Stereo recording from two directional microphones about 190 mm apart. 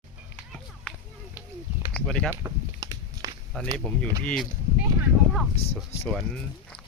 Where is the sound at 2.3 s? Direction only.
15° right (ahead or behind).